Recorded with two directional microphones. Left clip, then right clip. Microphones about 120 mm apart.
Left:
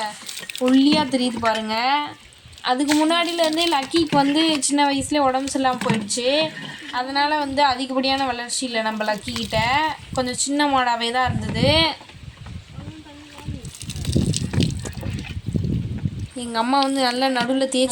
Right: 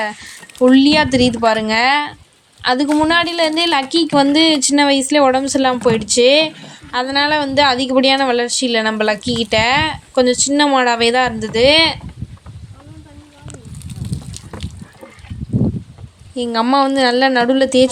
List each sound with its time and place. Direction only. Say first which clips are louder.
0.6 s a woman's voice: right 7 dB; 55° right (ahead or behind)
14.1 s a sound: left 10 dB; 40° left (ahead or behind)
16.3 s speech: right 6 dB; 45° right (ahead or behind)